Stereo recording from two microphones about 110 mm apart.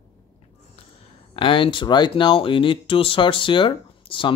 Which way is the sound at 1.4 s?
50° left (ahead or behind).